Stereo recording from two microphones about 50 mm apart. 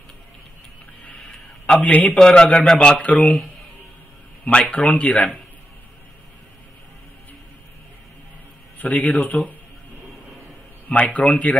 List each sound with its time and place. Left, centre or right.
1.0 s a sound: left
2.1 s speech: centre
4.5 s speech: left
8.7 s a man's voice: left
10.9 s speech: left